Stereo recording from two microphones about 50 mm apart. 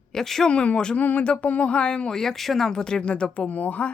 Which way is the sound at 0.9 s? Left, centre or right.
Left.